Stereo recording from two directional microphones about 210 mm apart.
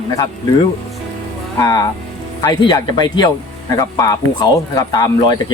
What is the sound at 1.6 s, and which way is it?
Speech, 15° left (ahead or behind).